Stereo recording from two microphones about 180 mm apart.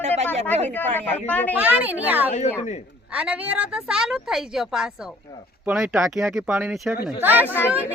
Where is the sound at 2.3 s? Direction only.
40° left (ahead or behind).